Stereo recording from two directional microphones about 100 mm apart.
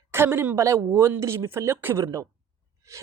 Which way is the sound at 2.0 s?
35° right (ahead or behind).